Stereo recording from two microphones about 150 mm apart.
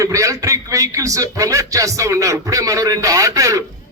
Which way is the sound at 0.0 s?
20° right (ahead or behind).